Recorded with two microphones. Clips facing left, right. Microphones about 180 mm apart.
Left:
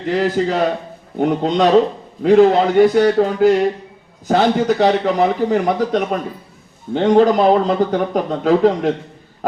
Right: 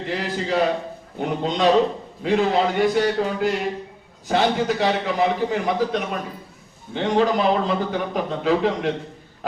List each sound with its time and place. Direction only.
0.1 s speech: 45° left (ahead or behind)